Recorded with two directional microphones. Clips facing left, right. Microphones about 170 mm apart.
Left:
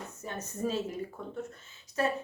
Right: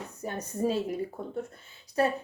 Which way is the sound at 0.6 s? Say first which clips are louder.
Right 4 dB; 35° right (ahead or behind).